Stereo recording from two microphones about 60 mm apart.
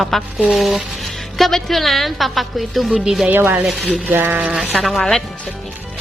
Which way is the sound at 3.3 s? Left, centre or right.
Right.